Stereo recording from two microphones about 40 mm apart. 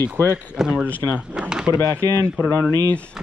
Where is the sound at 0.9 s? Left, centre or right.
Left.